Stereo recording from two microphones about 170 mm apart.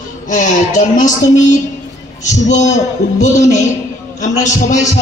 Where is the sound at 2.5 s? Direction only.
45° left (ahead or behind).